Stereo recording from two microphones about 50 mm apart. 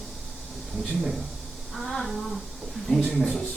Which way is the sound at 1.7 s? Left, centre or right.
Centre.